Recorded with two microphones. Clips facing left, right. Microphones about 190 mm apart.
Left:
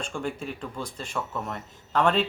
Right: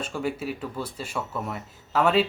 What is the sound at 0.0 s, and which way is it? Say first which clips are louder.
Speech: right 3 dB; 5° right (ahead or behind).